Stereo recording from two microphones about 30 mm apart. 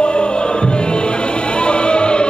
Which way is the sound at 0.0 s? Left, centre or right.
Left.